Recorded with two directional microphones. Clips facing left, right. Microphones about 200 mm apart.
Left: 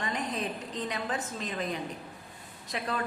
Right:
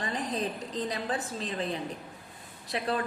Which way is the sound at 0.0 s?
35° right (ahead or behind).